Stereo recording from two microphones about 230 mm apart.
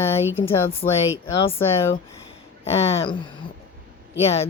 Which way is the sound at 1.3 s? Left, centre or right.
Left.